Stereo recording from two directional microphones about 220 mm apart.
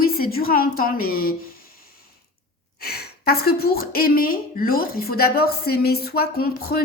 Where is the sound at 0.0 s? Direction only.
40° left (ahead or behind).